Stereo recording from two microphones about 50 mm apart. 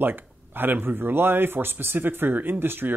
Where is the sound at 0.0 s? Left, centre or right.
Right.